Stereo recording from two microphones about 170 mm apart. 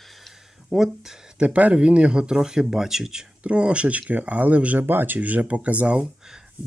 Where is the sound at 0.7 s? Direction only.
Centre (ahead or behind).